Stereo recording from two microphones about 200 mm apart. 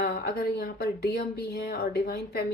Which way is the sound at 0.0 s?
55° left (ahead or behind).